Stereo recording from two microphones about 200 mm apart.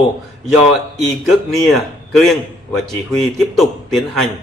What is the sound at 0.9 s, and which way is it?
A man's voice, centre (ahead or behind).